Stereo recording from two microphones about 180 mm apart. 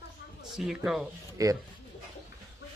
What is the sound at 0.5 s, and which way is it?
Speech, centre (ahead or behind).